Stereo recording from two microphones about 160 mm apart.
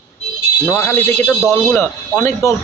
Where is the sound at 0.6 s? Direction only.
15° left (ahead or behind).